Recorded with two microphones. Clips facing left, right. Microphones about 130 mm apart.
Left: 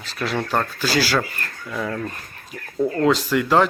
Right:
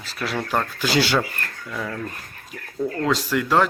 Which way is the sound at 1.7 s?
5° left (ahead or behind).